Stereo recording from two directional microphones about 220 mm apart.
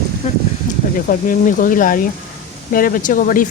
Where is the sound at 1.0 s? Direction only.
40° left (ahead or behind).